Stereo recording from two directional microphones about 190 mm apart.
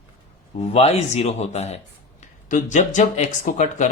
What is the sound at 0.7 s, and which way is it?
A man's voice, 35° left (ahead or behind).